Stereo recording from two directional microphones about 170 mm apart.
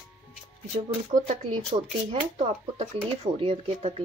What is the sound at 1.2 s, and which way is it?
Speech, 35° right (ahead or behind).